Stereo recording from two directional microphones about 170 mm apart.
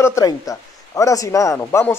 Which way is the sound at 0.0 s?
20° left (ahead or behind).